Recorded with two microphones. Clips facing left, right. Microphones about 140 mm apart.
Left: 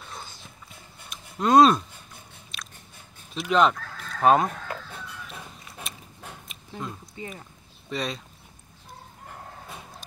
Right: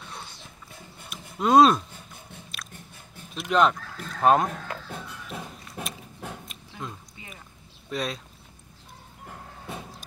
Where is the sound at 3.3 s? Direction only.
Centre (ahead or behind).